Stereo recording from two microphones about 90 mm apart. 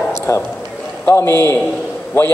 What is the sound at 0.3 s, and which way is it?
A man's voice, 35° left (ahead or behind).